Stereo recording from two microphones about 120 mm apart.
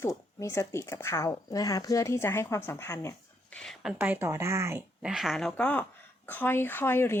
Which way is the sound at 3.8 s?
10° right (ahead or behind).